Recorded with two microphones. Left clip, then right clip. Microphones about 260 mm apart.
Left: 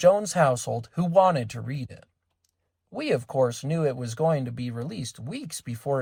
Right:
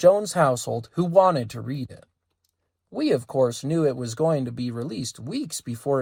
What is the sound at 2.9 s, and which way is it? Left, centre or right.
Speech, centre.